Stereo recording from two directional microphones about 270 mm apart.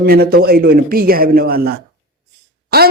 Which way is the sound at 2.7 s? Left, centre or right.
Right.